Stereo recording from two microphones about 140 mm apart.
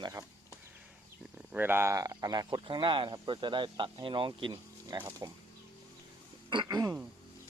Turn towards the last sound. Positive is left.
turn(degrees=-30)  # may be behind; listen again after turning